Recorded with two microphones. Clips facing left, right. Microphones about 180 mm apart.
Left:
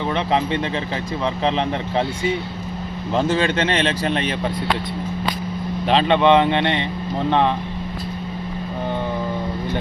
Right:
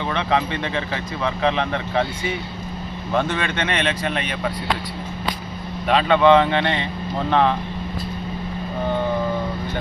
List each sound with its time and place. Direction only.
1.4 s speech: 30° left (ahead or behind)
5.9 s speech: 25° left (ahead or behind)